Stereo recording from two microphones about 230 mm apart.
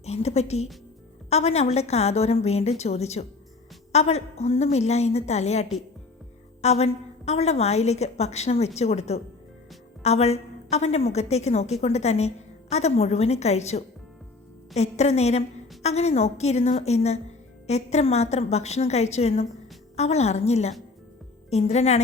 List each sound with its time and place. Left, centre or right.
0.0 s a woman's voice: left